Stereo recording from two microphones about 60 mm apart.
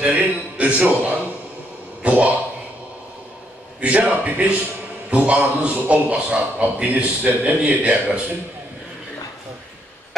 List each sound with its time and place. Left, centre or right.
0.0 s a man's voice: right
3.8 s a man's voice: right